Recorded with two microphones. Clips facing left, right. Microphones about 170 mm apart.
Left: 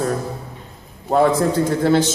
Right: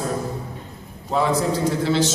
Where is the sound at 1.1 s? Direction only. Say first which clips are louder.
Left 5 dB; 50° left (ahead or behind).